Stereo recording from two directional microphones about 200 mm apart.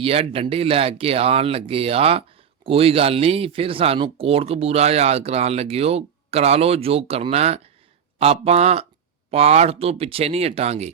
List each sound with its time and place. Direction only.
0.0 s speech: 30° right (ahead or behind)